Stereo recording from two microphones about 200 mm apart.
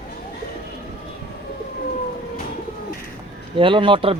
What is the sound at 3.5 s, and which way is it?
Speech, 25° right (ahead or behind).